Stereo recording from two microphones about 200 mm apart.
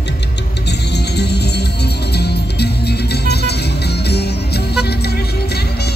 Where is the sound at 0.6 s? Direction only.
55° left (ahead or behind).